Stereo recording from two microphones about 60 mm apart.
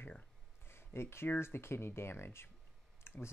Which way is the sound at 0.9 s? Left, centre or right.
Left.